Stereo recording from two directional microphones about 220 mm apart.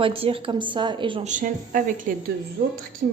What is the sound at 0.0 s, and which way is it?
A woman's voice, 25° right (ahead or behind).